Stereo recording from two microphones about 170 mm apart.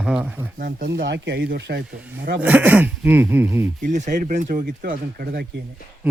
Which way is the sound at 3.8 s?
50° right (ahead or behind).